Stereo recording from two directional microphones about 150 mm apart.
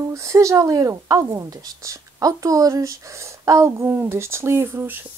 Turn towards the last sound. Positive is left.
turn(degrees=-15)  # may be behind; listen again after turning